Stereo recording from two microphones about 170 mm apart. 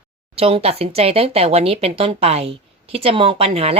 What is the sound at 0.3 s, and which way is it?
Speech, 35° right (ahead or behind).